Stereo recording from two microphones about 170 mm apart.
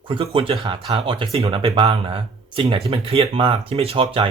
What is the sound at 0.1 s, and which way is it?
Speech, 30° right (ahead or behind).